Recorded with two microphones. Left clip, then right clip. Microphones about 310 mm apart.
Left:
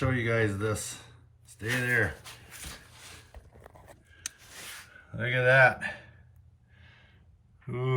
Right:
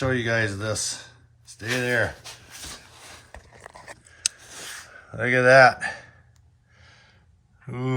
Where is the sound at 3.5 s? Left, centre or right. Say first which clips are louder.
Right 9 dB; left.